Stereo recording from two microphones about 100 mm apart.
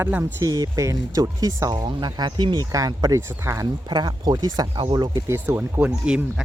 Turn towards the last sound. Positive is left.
turn(degrees=-10)  # may be behind; listen again after turning